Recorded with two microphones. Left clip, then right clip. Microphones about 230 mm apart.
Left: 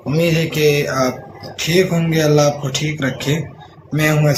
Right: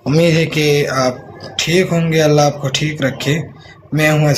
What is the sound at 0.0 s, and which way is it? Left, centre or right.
Speech, right.